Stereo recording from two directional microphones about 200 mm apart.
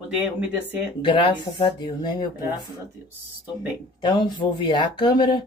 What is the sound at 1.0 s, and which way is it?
Speech, 25° left (ahead or behind).